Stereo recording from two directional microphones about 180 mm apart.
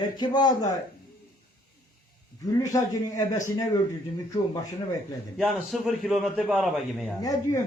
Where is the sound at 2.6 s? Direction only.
20° left (ahead or behind).